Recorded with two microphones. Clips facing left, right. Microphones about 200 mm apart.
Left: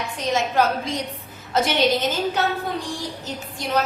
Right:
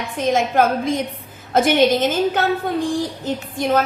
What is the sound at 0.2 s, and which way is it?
A woman's voice, 50° right (ahead or behind).